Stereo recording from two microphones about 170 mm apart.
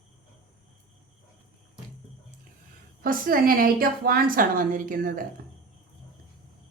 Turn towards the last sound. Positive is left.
turn(degrees=-55)  # may be behind; listen again after turning